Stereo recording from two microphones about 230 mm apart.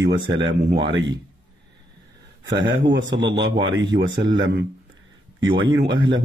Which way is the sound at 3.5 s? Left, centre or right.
Right.